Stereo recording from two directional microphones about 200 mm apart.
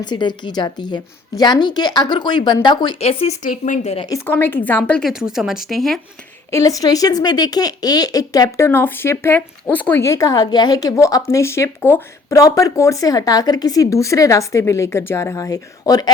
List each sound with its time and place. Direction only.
0.0 s a woman's voice: 20° left (ahead or behind)
4.0 s speech: 15° left (ahead or behind)
6.5 s speech: 15° left (ahead or behind)